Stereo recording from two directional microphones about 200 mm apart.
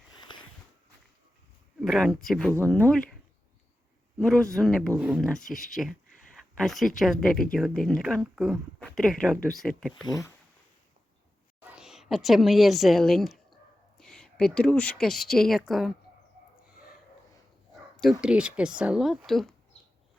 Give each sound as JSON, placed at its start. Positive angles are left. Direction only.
{"t": 0.2, "sound": "a sound", "side_deg": 25}
{"t": 1.8, "sound": "speech", "side_deg": 0}
{"t": 4.2, "sound": "speech", "side_deg": 5}
{"t": 10.1, "sound": "speech", "side_deg": 15}
{"t": 11.6, "sound": "a woman's voice", "side_deg": -5}
{"t": 17.9, "sound": "speech", "side_deg": 0}